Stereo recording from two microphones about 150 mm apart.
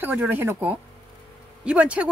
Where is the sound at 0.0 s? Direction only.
10° right (ahead or behind).